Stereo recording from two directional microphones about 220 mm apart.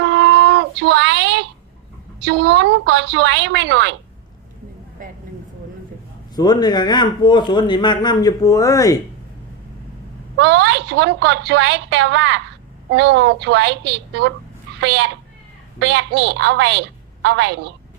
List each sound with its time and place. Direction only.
0.0 s a sound: 55° right (ahead or behind)
2.1 s a woman's voice: 50° right (ahead or behind)
5.0 s vehicle: 40° right (ahead or behind)
6.3 s speech: 20° left (ahead or behind)
10.3 s a woman's voice: 50° right (ahead or behind)